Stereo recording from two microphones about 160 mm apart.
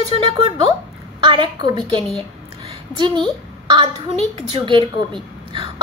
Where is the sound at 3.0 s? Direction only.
30° right (ahead or behind).